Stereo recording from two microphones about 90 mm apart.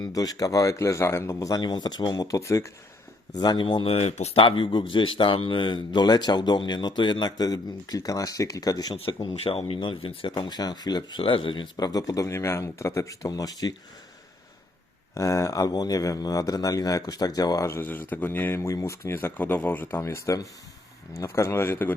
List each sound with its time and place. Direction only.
0.0 s speech: 45° left (ahead or behind)
1.7 s a man's voice: 55° left (ahead or behind); by 2.7 s 35° left (ahead or behind)
3.3 s a man's voice: 50° left (ahead or behind)
9.0 s speech: 75° left (ahead or behind)
9.4 s speech: 90° left; by 11.0 s 50° left (ahead or behind)
11.2 s a man's voice: 75° left (ahead or behind); by 13.7 s 45° left (ahead or behind)
15.1 s a man's voice: 35° left (ahead or behind)
17.7 s speech: 25° left (ahead or behind)
19.9 s speech: 30° left (ahead or behind)